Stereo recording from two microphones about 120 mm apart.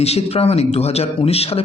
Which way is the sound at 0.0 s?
60° left (ahead or behind).